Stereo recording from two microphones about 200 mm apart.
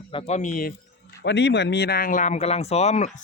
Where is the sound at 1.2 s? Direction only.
60° left (ahead or behind).